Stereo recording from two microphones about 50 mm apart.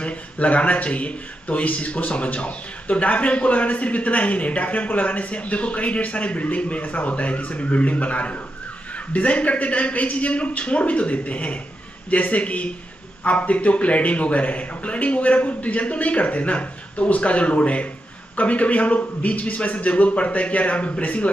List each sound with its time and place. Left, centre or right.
0.0 s speech: left